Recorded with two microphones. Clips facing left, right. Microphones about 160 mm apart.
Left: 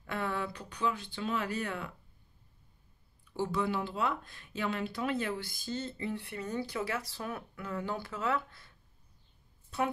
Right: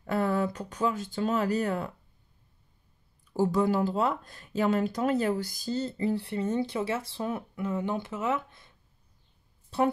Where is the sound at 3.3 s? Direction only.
40° right (ahead or behind); by 8.7 s 20° right (ahead or behind).